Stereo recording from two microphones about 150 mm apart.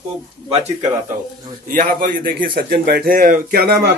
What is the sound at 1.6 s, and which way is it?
A man's voice, 65° right (ahead or behind).